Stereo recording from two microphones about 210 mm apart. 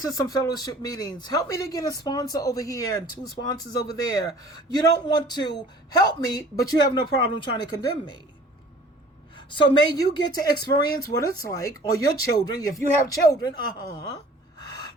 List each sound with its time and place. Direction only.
0.0 s a man's voice: 15° left (ahead or behind)
9.5 s speech: 20° left (ahead or behind)
14.6 s a sound: 20° left (ahead or behind)